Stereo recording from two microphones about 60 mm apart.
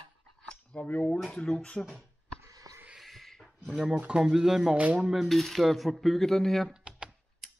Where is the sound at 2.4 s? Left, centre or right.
Right.